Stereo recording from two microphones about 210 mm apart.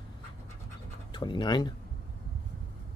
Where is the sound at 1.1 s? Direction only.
20° left (ahead or behind).